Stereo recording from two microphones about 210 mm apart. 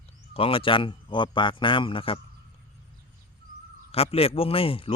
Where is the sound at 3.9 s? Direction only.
30° left (ahead or behind).